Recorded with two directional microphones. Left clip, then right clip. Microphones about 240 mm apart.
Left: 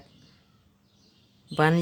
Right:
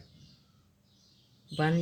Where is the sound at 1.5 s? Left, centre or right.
Left.